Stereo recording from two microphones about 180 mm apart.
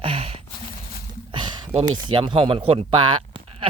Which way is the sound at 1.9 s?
25° right (ahead or behind).